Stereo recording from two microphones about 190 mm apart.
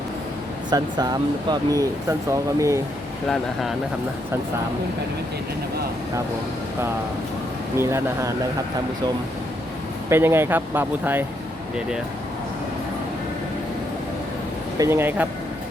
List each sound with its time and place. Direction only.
0.7 s speech: 20° right (ahead or behind)
7.8 s speech: 15° right (ahead or behind)
10.1 s speech: 10° right (ahead or behind)
14.8 s speech: 10° right (ahead or behind)